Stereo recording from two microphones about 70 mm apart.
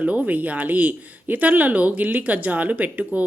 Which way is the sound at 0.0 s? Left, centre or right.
Right.